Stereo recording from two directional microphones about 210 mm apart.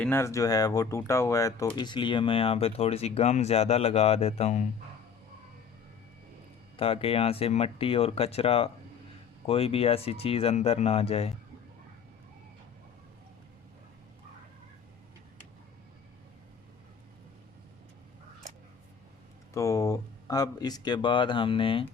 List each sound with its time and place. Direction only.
0.0 s speech: 10° left (ahead or behind); by 4.6 s 30° left (ahead or behind)
6.7 s speech: 25° left (ahead or behind)
19.5 s speech: 15° left (ahead or behind)